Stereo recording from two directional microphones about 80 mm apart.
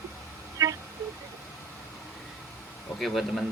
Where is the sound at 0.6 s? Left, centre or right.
Right.